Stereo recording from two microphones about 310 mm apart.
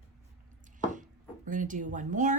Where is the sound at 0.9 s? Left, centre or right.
Right.